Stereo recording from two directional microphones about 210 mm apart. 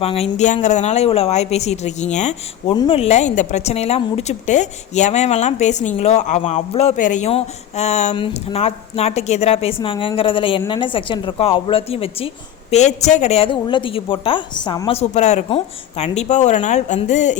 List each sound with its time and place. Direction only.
0.0 s a woman's voice: 30° left (ahead or behind)